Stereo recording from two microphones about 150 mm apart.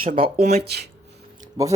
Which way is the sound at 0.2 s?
45° right (ahead or behind).